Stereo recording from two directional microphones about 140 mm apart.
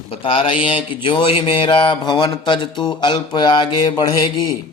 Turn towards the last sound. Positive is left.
turn(degrees=30)  # may be behind; listen again after turning